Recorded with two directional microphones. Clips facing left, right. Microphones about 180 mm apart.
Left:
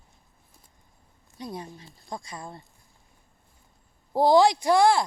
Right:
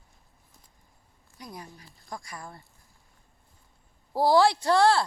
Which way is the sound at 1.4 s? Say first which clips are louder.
Left 6 dB; 25° left (ahead or behind).